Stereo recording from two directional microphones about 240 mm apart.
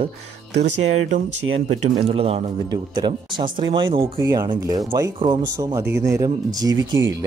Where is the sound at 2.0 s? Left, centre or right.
Right.